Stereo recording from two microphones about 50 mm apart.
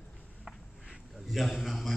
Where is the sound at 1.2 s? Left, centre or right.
Centre.